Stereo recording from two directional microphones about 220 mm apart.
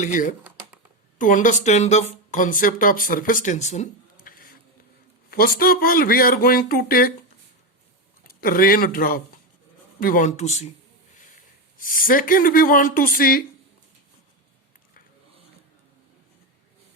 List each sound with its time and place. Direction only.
0.0 s speech: 35° left (ahead or behind)
0.4 s a sound: 5° right (ahead or behind)
1.2 s speech: 35° left (ahead or behind)
8.3 s speech: 40° left (ahead or behind)
11.8 s speech: 40° left (ahead or behind)